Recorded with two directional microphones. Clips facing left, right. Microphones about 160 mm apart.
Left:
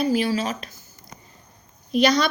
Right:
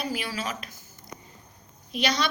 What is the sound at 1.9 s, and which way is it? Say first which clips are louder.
Speech: left 8 dB; 40° left (ahead or behind).